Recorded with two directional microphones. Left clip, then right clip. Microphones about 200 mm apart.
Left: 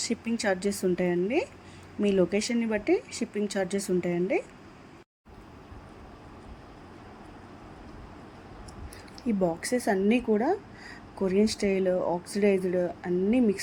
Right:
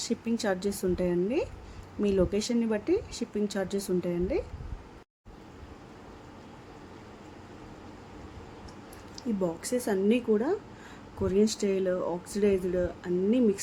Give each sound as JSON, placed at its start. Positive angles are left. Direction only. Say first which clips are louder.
{"t": 0.0, "sound": "speech", "louder": "left 1 dB", "side_deg": 5}
{"t": 9.4, "sound": "speech", "louder": "left 3 dB", "side_deg": 10}